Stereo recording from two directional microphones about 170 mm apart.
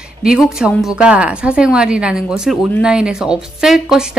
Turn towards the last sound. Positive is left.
turn(degrees=-5)  # may be behind; listen again after turning